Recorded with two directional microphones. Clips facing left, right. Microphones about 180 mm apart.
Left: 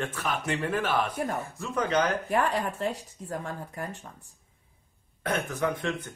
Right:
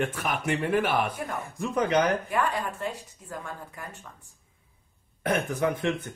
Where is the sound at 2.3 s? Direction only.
30° left (ahead or behind).